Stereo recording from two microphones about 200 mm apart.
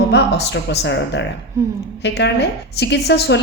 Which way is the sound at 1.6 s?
15° right (ahead or behind).